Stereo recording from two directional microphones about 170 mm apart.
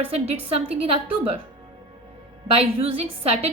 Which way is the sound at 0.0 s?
35° right (ahead or behind).